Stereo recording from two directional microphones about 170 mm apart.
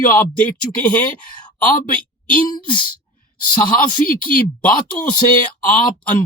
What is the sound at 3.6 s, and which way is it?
Speech, 55° left (ahead or behind).